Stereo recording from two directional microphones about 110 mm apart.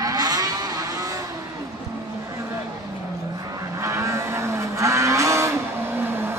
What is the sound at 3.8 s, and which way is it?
Vehicle, 30° right (ahead or behind).